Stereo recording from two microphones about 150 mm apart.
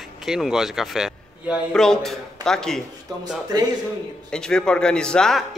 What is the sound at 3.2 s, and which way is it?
Speech, 25° right (ahead or behind).